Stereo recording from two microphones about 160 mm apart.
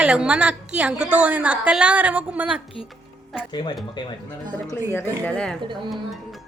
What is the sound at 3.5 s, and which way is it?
Speech, 30° left (ahead or behind).